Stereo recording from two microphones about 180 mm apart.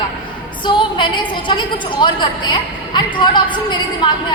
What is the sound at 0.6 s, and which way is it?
A woman's voice, 25° left (ahead or behind).